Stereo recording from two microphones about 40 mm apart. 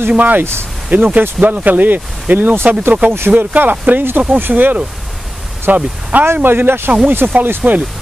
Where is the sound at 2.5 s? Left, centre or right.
Right.